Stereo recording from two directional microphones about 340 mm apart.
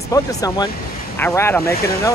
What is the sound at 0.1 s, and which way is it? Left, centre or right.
Speech, centre.